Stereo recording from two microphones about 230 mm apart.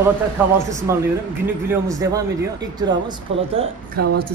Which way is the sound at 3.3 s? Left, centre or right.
Right.